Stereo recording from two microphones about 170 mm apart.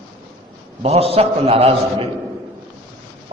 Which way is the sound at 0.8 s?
35° right (ahead or behind).